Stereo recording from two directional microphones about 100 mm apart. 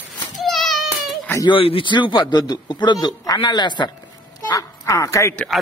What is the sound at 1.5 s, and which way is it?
Speech, 65° left (ahead or behind).